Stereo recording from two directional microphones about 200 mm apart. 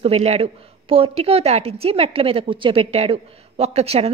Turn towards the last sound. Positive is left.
turn(degrees=-30)  # may be behind; listen again after turning